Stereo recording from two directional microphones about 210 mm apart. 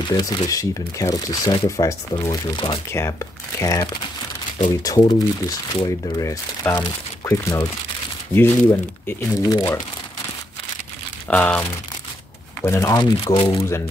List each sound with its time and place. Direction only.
0.1 s speech: 20° left (ahead or behind)
2.9 s speech: 15° left (ahead or behind)
11.2 s speech: 5° left (ahead or behind)
12.6 s speech: 15° left (ahead or behind)